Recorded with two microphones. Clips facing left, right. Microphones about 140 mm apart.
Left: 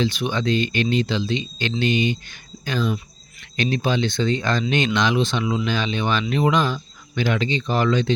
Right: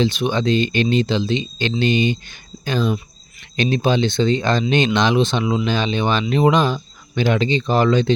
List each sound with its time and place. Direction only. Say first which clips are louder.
0.0 s speech: right 4 dB; 25° right (ahead or behind)